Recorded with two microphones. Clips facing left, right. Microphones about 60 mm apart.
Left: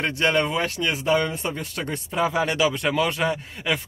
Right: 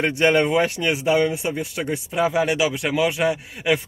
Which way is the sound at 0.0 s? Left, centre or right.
Centre.